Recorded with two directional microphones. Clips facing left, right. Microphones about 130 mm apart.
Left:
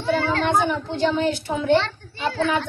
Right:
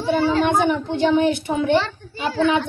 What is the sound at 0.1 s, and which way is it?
Speech, 15° right (ahead or behind).